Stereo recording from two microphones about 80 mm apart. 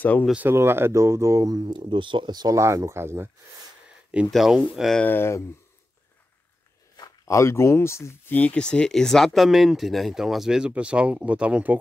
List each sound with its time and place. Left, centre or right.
0.5 s speech: right
1.6 s speech: right
2.5 s speech: right
4.3 s speech: centre
5.0 s speech: left
7.2 s speech: left
8.3 s speech: left; by 11.8 s centre